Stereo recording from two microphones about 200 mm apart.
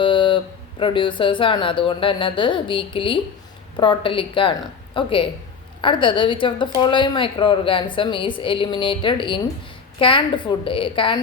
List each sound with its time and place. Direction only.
0.0 s speech: 25° left (ahead or behind)